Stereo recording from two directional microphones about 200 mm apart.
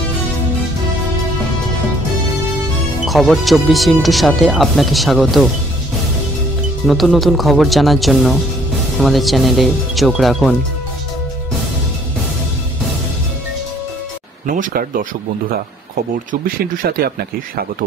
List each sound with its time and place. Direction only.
3.1 s speech: centre (ahead or behind)
6.9 s speech: centre (ahead or behind)
14.4 s speech: 45° right (ahead or behind)
16.3 s speech: 45° right (ahead or behind)